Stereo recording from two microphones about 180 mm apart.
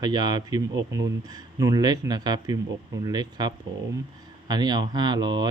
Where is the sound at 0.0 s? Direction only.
25° right (ahead or behind).